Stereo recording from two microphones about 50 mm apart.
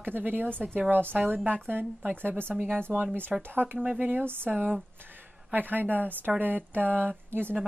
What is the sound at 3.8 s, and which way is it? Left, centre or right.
Speech, right.